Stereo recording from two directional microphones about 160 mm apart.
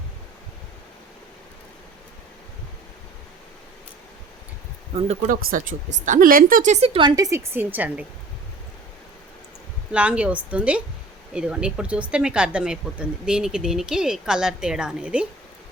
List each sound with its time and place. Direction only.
5.0 s speech: 55° right (ahead or behind); by 7.1 s 35° right (ahead or behind)
7.2 s a woman's voice: 20° right (ahead or behind)
9.9 s a woman's voice: 10° right (ahead or behind)